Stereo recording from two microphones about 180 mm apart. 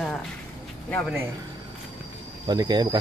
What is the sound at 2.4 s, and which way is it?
Speech, 20° right (ahead or behind).